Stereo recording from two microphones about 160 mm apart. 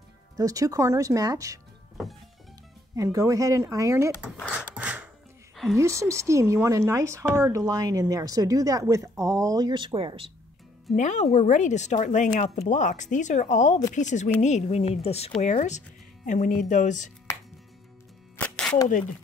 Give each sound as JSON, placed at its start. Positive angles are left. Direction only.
{"t": 0.4, "sound": "a woman's voice", "side_deg": -20}
{"t": 3.0, "sound": "a woman's voice", "side_deg": -20}
{"t": 4.6, "sound": "a sound", "side_deg": -10}
{"t": 5.8, "sound": "a woman's voice", "side_deg": -20}
{"t": 11.0, "sound": "speech", "side_deg": 50}
{"t": 18.4, "sound": "a sound", "side_deg": 10}